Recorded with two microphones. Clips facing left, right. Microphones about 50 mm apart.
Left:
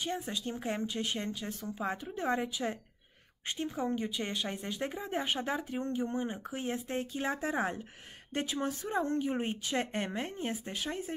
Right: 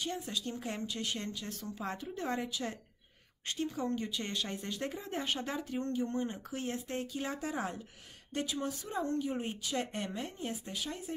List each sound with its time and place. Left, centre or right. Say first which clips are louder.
0.0 s speech: left 2 dB; left